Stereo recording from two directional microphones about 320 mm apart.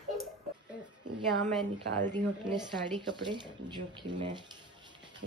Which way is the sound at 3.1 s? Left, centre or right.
Centre.